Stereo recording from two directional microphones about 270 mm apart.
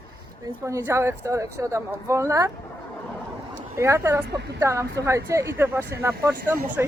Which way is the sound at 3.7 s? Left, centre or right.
Centre.